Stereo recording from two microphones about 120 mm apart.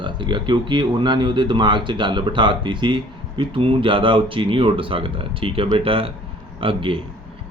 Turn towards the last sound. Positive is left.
turn(degrees=-45)  # may be behind; listen again after turning